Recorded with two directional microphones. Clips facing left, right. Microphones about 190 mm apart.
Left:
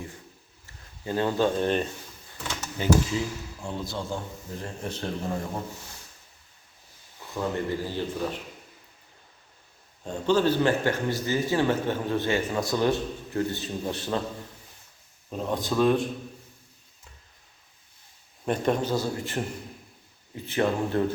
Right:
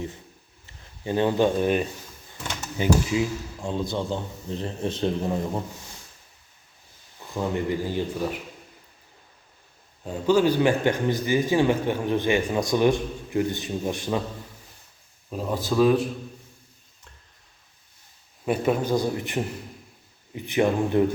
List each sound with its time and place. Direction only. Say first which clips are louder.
1.0 s a man's voice: right 3 dB; 20° right (ahead or behind)
7.3 s a man's voice: right 2 dB; 15° right (ahead or behind)
10.0 s a man's voice: right 3 dB; 5° right (ahead or behind)
15.3 s speech: right 2 dB; 5° right (ahead or behind)
18.4 s a man's voice: right 2 dB; 5° right (ahead or behind)